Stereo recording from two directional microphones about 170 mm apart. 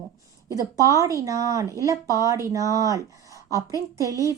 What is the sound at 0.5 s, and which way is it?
A woman's voice, 20° right (ahead or behind).